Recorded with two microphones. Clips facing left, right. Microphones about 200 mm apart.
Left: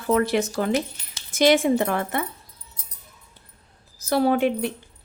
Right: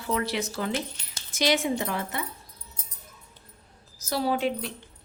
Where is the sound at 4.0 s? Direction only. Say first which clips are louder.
Left 7 dB; 55° left (ahead or behind).